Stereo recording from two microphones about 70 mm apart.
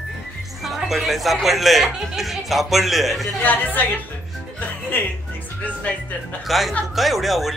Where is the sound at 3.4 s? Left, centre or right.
Left.